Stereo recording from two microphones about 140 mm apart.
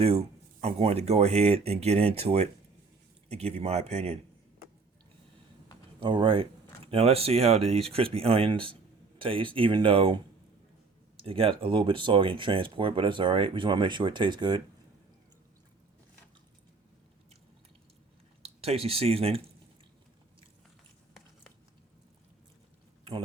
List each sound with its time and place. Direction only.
0.0 s speech: 45° right (ahead or behind)
6.0 s speech: 35° right (ahead or behind)
11.2 s speech: 40° right (ahead or behind)
18.4 s speech: 45° right (ahead or behind)